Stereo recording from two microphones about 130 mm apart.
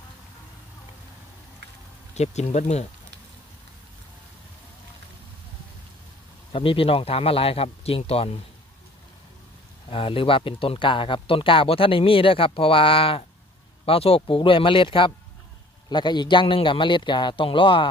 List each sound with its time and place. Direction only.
2.1 s speech: 60° left (ahead or behind)
6.5 s speech: 45° left (ahead or behind)
9.8 s a man's voice: 45° left (ahead or behind)